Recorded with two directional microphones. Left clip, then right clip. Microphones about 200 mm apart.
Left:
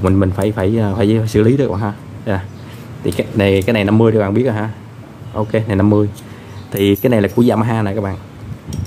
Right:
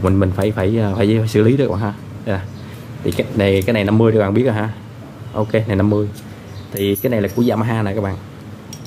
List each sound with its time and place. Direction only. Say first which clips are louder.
0.0 s speech: left 1 dB; 10° left (ahead or behind)